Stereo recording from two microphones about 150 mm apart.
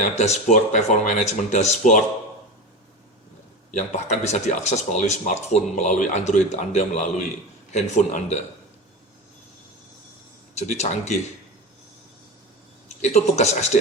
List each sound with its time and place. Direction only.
0.0 s speech: 50° left (ahead or behind)
3.7 s speech: 50° left (ahead or behind)
10.5 s speech: 50° left (ahead or behind)
13.0 s speech: 50° left (ahead or behind)